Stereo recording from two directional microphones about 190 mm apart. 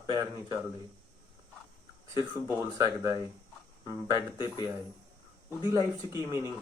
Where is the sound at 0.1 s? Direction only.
20° right (ahead or behind).